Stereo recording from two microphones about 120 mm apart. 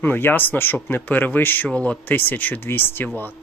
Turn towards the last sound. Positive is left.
turn(degrees=15)  # may be behind; listen again after turning